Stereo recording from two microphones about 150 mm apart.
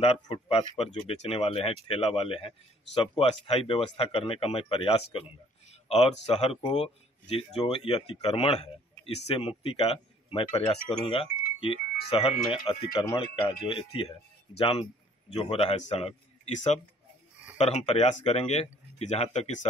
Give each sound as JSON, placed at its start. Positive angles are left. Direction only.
{"t": 0.0, "sound": "speech", "side_deg": 40}
{"t": 12.9, "sound": "speech", "side_deg": 30}